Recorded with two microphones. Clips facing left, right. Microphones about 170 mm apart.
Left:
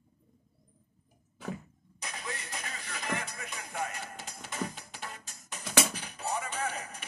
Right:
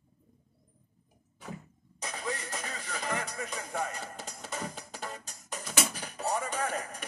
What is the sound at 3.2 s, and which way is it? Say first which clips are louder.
Music: right 5 dB; 35° right (ahead or behind).